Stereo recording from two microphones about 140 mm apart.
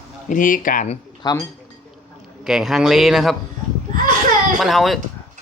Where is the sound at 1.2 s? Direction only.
30° left (ahead or behind).